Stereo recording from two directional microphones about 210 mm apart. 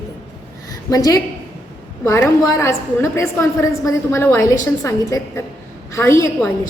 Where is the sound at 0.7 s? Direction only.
15° left (ahead or behind).